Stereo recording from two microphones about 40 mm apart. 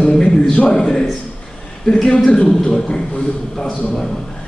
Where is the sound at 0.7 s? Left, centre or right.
Centre.